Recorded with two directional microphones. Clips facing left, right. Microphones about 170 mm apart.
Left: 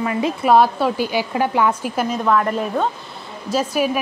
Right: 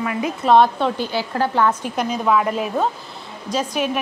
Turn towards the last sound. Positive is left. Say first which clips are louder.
# left 3 dB
turn(degrees=5)  # may be behind; listen again after turning